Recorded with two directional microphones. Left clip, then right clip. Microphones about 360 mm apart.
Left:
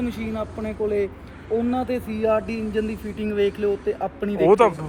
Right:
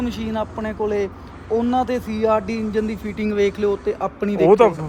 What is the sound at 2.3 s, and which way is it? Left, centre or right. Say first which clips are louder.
Speech: right 2 dB; centre.